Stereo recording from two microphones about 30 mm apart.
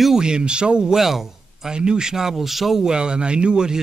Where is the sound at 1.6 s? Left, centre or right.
Right.